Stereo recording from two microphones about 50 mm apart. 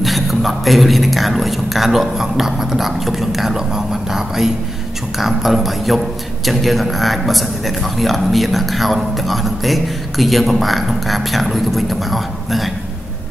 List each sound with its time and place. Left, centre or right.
0.0 s a man's voice: centre